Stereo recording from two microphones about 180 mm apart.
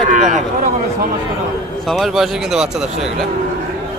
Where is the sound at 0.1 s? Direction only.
45° right (ahead or behind).